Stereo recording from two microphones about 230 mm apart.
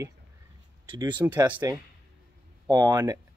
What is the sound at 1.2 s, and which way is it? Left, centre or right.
Speech, centre.